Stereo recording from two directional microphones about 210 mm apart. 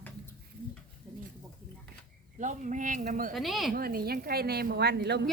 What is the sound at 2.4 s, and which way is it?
Speech, 35° right (ahead or behind).